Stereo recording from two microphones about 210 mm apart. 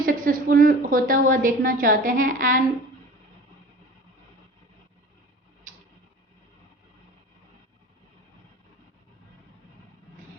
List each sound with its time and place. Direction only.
0.0 s a woman's voice: 40° right (ahead or behind)